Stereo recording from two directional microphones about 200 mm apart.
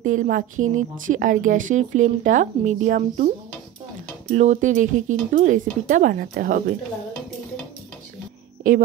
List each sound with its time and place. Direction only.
0.0 s a woman's voice: 40° right (ahead or behind)
4.3 s a woman's voice: 35° right (ahead or behind)